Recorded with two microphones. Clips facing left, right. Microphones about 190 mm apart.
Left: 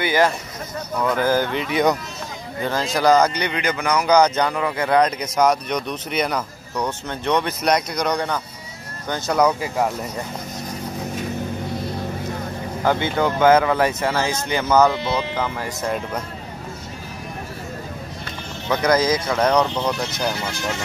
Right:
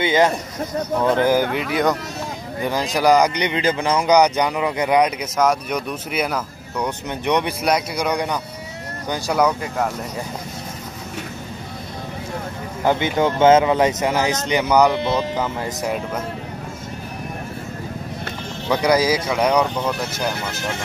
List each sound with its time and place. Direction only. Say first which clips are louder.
0.0 s speech: right 2 dB; 20° right (ahead or behind)
1.3 s speech: right 2 dB; 10° right (ahead or behind)
2.6 s speech: right 1 dB; 15° right (ahead or behind)
4.2 s speech: right 1 dB; 15° right (ahead or behind); by 9.8 s 5° left (ahead or behind)
12.8 s speech: right 2 dB; 20° right (ahead or behind)
18.7 s speech: right 1 dB; 10° right (ahead or behind)